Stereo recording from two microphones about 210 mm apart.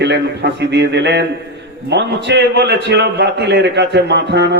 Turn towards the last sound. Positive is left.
turn(degrees=-55)  # may be behind; listen again after turning